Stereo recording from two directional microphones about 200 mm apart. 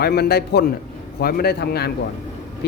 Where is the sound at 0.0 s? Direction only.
55° left (ahead or behind).